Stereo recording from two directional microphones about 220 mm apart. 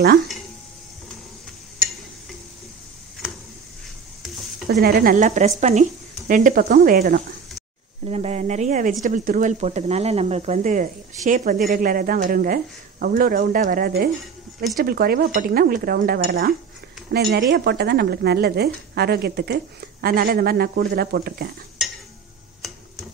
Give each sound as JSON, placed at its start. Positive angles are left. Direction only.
{"t": 4.2, "sound": "stir", "side_deg": 0}
{"t": 4.8, "sound": "speech", "side_deg": -45}
{"t": 8.0, "sound": "speech", "side_deg": -30}
{"t": 14.2, "sound": "a sound", "side_deg": 0}
{"t": 14.8, "sound": "a woman's voice", "side_deg": -45}